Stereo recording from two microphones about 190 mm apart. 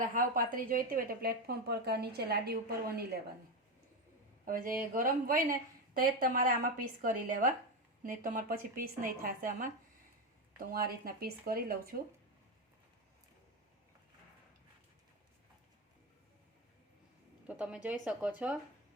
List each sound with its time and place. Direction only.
0.0 s speech: 45° right (ahead or behind)
4.4 s a woman's voice: 45° right (ahead or behind)
10.7 s a woman's voice: 50° right (ahead or behind)
17.4 s a woman's voice: 5° right (ahead or behind)